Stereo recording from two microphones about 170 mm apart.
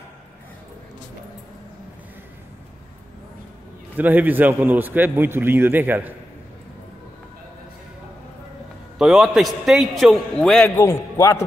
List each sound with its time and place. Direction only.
3.9 s a man's voice: 10° right (ahead or behind)
8.9 s a man's voice: centre (ahead or behind)
10.8 s a man's voice: 15° left (ahead or behind)